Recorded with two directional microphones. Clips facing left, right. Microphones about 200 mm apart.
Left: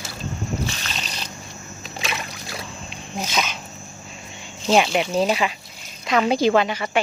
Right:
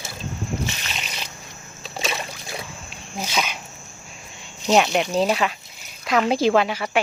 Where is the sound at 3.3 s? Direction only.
10° right (ahead or behind).